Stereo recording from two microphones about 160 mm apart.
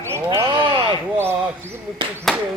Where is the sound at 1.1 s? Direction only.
15° right (ahead or behind).